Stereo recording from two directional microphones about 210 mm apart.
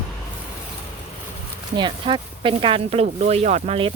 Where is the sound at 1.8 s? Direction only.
20° right (ahead or behind).